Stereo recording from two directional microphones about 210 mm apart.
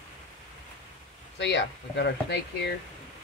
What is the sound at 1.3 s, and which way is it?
Speech, 55° left (ahead or behind).